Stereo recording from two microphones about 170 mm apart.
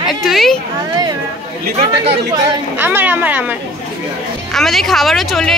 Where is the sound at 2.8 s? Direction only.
10° right (ahead or behind).